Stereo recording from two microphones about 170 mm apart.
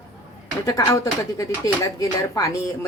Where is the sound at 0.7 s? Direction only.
20° left (ahead or behind).